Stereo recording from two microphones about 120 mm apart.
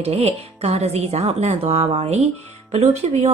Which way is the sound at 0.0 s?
60° right (ahead or behind).